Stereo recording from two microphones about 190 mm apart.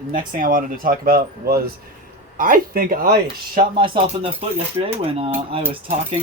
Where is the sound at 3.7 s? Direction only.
30° right (ahead or behind).